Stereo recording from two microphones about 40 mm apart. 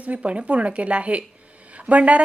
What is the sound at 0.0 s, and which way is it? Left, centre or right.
Speech, right.